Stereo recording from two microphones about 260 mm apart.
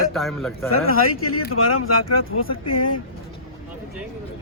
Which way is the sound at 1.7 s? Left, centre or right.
Left.